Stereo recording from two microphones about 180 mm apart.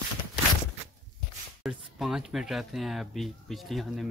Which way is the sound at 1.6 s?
Centre (ahead or behind).